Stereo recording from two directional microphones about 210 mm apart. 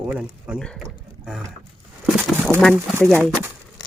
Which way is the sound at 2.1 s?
5° right (ahead or behind).